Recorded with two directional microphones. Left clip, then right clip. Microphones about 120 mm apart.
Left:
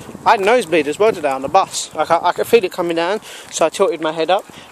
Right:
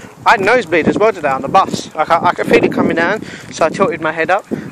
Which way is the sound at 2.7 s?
10° left (ahead or behind).